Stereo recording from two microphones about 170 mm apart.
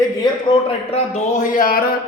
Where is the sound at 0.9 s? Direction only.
50° left (ahead or behind).